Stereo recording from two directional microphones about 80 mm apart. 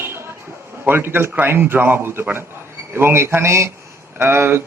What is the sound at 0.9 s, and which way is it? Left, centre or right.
Speech, right.